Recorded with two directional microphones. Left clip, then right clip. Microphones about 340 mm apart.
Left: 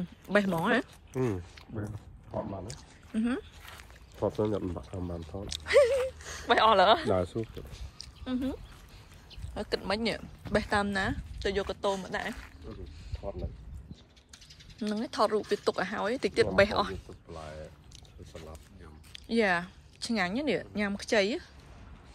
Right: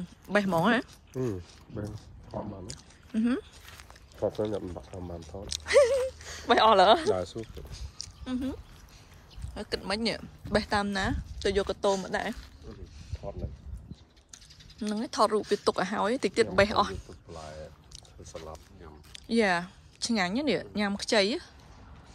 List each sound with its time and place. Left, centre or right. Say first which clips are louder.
0.3 s speech: even; centre
1.1 s speech: left 1 dB; centre
2.7 s speech: right 2 dB; centre
4.4 s speech: left 1 dB; left
5.5 s speech: right 1 dB; centre
7.1 s speech: even; left
7.7 s speech: right 4 dB; centre
13.2 s speech: left 1 dB; left
14.3 s speech: right 1 dB; centre